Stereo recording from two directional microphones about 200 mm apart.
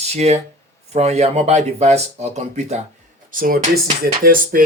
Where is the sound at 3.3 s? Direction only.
45° right (ahead or behind).